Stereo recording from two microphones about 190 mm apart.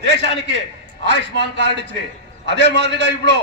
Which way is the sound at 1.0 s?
65° right (ahead or behind).